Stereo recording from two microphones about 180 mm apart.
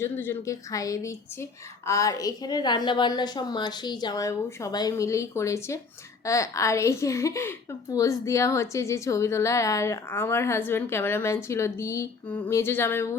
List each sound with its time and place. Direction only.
0.0 s a woman's voice: 15° left (ahead or behind)